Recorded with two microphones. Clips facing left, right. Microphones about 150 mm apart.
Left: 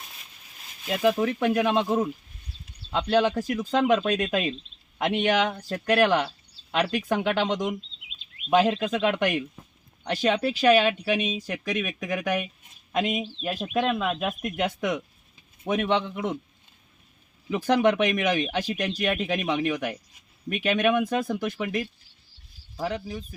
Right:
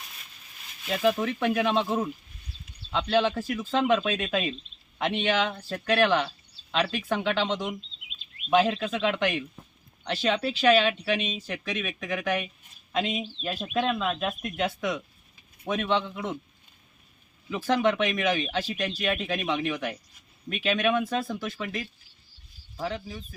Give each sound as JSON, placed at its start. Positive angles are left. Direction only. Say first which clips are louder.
{"t": 0.9, "sound": "speech", "louder": "left 2 dB", "side_deg": 15}
{"t": 17.5, "sound": "speech", "louder": "left 3 dB", "side_deg": 15}